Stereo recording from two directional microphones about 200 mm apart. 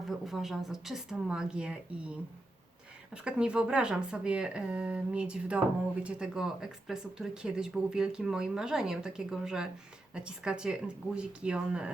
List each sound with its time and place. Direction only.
0.1 s speech: centre (ahead or behind)
3.2 s speech: 5° right (ahead or behind)